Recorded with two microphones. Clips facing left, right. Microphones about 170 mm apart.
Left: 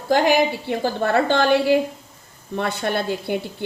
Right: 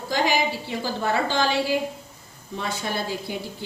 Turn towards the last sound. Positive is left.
turn(degrees=60)  # may be behind; listen again after turning